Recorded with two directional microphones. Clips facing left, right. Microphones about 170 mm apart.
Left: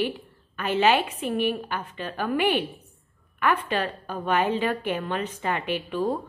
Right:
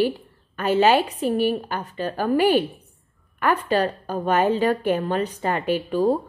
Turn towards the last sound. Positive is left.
turn(degrees=-40)  # may be behind; listen again after turning